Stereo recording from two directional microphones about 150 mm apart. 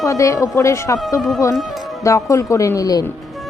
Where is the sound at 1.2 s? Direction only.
Centre (ahead or behind).